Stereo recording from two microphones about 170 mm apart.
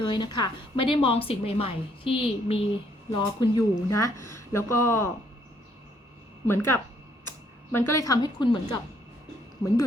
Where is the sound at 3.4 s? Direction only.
20° left (ahead or behind).